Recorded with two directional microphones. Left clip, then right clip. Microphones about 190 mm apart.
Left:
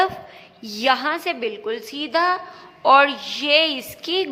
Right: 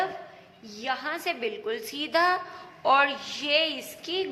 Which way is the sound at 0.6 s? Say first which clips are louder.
Left 11 dB; 35° left (ahead or behind).